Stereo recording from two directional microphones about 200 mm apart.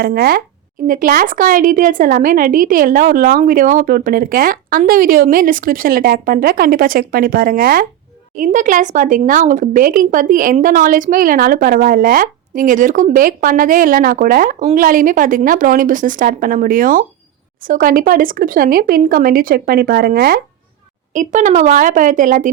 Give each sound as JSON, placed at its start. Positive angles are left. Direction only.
{"t": 0.0, "sound": "a woman's voice", "side_deg": -50}
{"t": 21.1, "sound": "a woman's voice", "side_deg": -40}